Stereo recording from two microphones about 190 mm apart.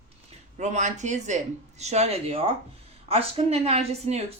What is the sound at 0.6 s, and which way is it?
Speech, 40° right (ahead or behind).